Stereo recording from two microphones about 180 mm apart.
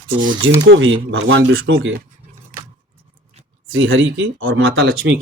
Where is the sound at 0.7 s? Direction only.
90° right.